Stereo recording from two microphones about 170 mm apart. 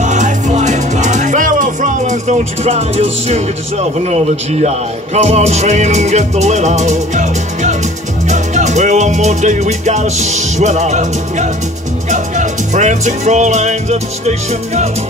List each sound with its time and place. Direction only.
0.0 s music: 45° right (ahead or behind)